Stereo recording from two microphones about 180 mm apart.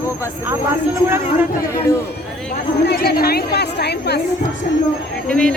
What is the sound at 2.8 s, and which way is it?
Speech, 60° left (ahead or behind).